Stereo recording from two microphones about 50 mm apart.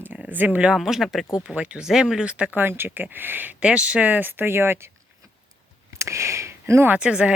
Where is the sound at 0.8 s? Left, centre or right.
Centre.